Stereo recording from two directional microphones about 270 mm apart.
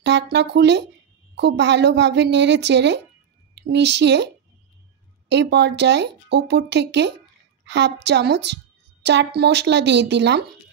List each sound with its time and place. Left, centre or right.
0.0 s a woman's voice: right
5.3 s speech: right